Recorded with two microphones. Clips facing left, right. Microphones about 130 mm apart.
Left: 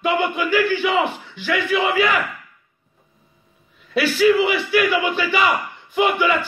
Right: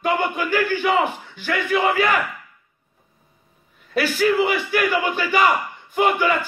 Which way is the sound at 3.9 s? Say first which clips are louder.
Left 3 dB; 45° right (ahead or behind).